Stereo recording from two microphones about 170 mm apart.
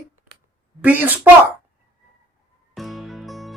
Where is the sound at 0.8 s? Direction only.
10° right (ahead or behind).